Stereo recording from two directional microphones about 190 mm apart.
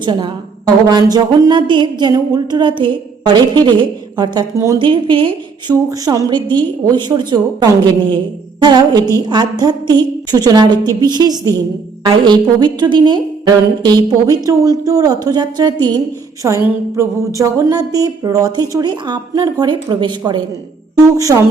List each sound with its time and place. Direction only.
0.0 s speech: 25° right (ahead or behind)